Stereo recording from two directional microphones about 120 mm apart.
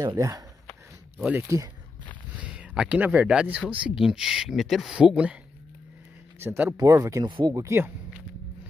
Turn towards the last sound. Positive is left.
turn(degrees=-20)  # may be behind; listen again after turning